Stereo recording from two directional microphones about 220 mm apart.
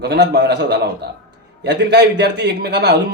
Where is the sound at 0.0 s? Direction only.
50° right (ahead or behind).